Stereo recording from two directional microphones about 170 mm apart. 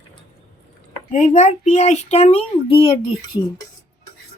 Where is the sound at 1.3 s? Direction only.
45° left (ahead or behind).